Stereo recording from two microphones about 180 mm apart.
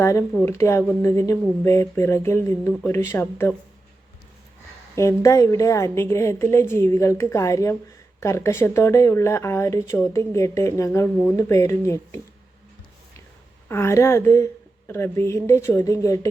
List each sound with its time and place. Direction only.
0.0 s a woman's voice: 15° left (ahead or behind)
4.9 s a woman's voice: 15° left (ahead or behind)
13.7 s a woman's voice: 15° left (ahead or behind)